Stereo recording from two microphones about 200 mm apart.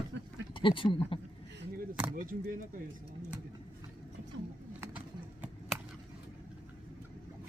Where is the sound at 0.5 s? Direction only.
25° left (ahead or behind).